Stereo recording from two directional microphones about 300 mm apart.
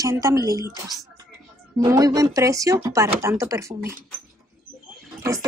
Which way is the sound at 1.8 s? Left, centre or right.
Centre.